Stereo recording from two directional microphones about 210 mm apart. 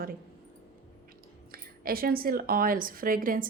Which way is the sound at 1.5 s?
45° right (ahead or behind).